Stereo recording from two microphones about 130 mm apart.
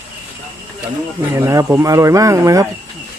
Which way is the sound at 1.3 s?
25° right (ahead or behind).